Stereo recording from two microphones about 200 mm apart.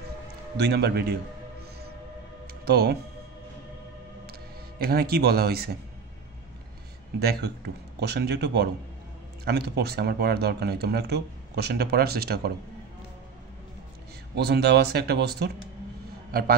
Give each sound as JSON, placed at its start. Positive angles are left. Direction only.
{"t": 0.6, "sound": "a man's voice", "side_deg": -55}
{"t": 2.4, "sound": "music", "side_deg": -50}
{"t": 4.3, "sound": "speech", "side_deg": -50}
{"t": 7.2, "sound": "a man's voice", "side_deg": -55}
{"t": 14.3, "sound": "speech", "side_deg": -55}
{"t": 16.3, "sound": "a sound", "side_deg": -50}